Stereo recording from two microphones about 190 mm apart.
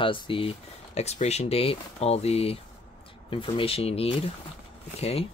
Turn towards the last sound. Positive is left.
turn(degrees=30)  # may be behind; listen again after turning